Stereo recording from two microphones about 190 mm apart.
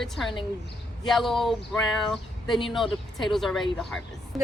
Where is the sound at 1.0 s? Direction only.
Centre (ahead or behind).